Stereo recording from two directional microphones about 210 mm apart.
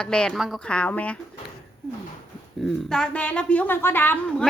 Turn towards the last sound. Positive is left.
turn(degrees=5)  # may be behind; listen again after turning